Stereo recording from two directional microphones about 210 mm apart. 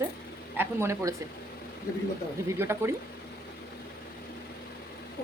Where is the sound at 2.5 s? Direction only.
10° right (ahead or behind).